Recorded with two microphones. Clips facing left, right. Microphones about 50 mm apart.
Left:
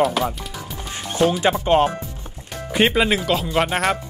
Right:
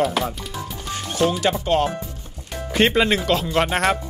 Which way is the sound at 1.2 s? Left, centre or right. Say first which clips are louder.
Left 2 dB; centre.